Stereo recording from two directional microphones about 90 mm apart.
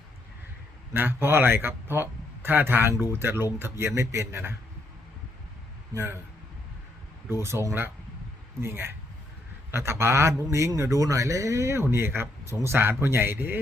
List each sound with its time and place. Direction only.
0.9 s a man's voice: 25° right (ahead or behind)
5.9 s a man's voice: 30° right (ahead or behind)
7.4 s a man's voice: 30° right (ahead or behind)